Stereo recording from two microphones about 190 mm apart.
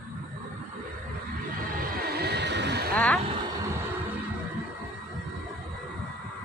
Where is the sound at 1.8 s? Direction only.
50° right (ahead or behind).